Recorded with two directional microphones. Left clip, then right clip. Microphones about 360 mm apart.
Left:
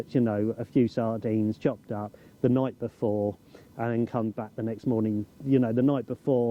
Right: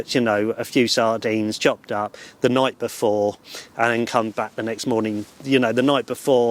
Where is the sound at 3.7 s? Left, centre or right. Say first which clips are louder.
Right 10 dB; centre.